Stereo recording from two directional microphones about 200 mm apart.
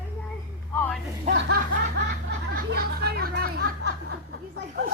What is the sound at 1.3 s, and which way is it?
Snicker, 35° right (ahead or behind).